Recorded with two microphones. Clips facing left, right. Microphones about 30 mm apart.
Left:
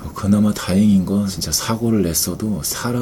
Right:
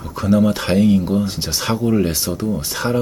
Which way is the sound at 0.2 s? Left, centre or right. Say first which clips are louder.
Right 1 dB; centre.